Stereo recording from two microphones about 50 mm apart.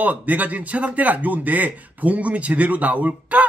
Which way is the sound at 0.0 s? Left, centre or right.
Right.